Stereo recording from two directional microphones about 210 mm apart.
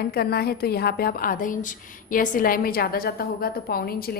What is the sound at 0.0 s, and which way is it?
A woman's voice, 45° left (ahead or behind).